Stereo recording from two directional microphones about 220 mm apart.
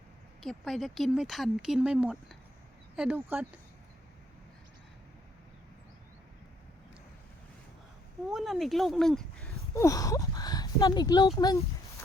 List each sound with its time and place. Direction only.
0.4 s speech: centre (ahead or behind)
8.3 s speech: centre (ahead or behind)
9.7 s speech: 15° left (ahead or behind)